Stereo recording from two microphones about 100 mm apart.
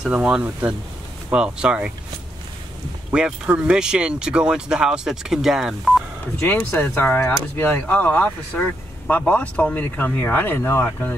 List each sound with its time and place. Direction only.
0.0 s speech: 10° right (ahead or behind)
3.1 s speech: 10° right (ahead or behind)
6.4 s speech: 20° left (ahead or behind)